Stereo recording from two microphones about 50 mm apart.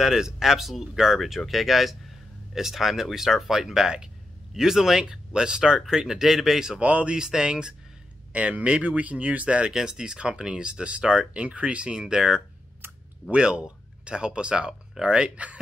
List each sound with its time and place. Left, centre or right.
0.0 s speech: centre
6.8 s speech: right
7.2 s speech: centre
8.3 s speech: right
12.8 s a sound: right
13.3 s speech: centre